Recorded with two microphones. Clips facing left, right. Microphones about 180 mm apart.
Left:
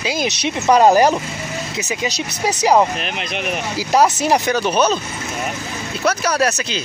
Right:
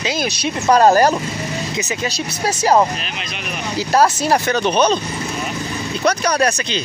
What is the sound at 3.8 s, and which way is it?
Speech, 15° left (ahead or behind).